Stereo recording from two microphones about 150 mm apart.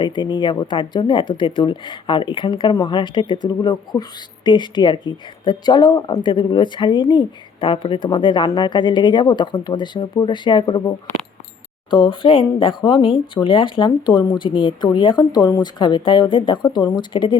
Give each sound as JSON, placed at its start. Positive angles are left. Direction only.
{"t": 0.0, "sound": "speech", "side_deg": 30}